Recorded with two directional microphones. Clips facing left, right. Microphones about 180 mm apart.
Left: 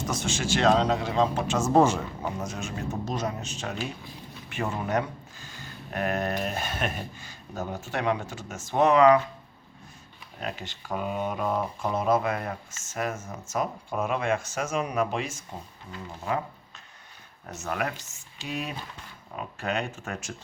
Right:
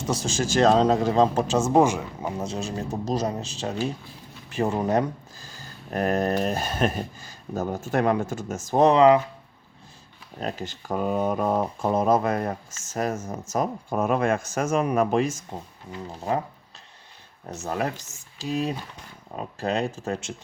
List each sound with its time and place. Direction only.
0.1 s speech: 40° right (ahead or behind)
1.5 s speech: 20° right (ahead or behind)
2.4 s speech: 30° right (ahead or behind)
10.4 s speech: 40° right (ahead or behind)
17.5 s speech: 30° right (ahead or behind)